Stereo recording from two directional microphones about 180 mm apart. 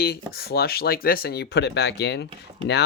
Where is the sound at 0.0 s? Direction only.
60° left (ahead or behind).